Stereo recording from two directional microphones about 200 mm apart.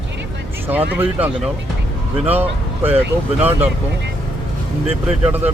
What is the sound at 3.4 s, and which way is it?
Speech, 10° right (ahead or behind).